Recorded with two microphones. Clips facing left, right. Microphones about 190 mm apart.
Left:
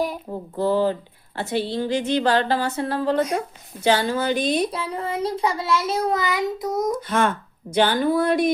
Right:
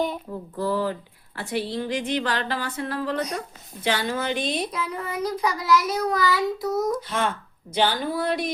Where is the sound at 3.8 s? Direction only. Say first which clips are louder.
Left 5 dB; 30° left (ahead or behind).